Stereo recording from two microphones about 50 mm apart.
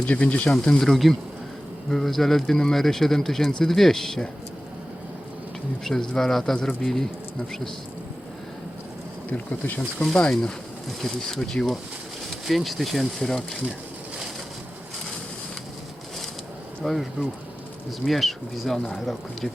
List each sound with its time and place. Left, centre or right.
0.0 s speech: left
0.5 s speech: centre
5.8 s speech: centre
9.3 s speech: left
10.0 s speech: centre
16.8 s speech: centre